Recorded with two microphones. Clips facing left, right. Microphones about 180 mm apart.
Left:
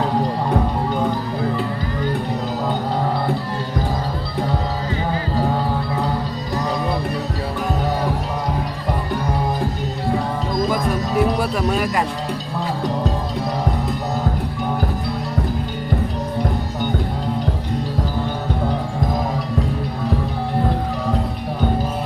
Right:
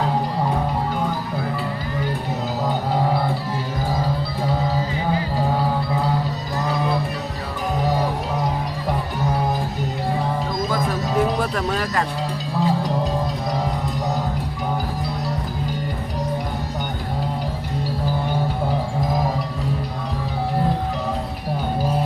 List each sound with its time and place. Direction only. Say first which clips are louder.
11.2 s music: left 2 dB; 10° left (ahead or behind)